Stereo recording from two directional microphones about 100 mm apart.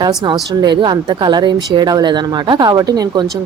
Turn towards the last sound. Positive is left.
turn(degrees=-40)  # may be behind; listen again after turning